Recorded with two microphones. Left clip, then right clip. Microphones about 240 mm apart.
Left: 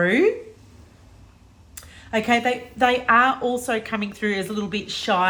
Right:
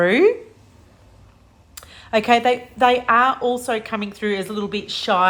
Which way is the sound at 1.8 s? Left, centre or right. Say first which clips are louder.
Right 5 dB; centre.